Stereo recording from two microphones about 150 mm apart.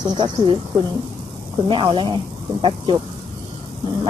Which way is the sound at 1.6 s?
35° right (ahead or behind).